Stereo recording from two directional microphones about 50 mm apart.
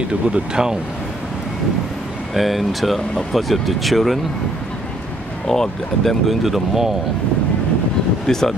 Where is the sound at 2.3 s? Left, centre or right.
Centre.